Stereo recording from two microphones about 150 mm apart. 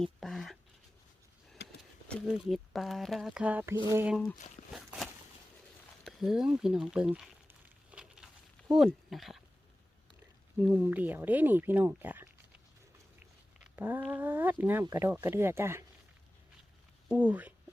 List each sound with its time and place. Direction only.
0.0 s speech: centre (ahead or behind)
1.6 s a sound: 90° left
2.2 s speech: centre (ahead or behind)
4.4 s speech: 50° left (ahead or behind)
4.7 s a sound: centre (ahead or behind)
6.1 s speech: 5° right (ahead or behind)
7.9 s a sound: 5° right (ahead or behind)
10.6 s speech: 10° right (ahead or behind)
13.7 s speech: 10° right (ahead or behind)
17.1 s speech: 10° right (ahead or behind)